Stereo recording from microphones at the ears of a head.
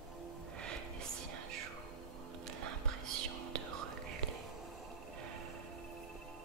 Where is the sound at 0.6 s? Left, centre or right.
Right.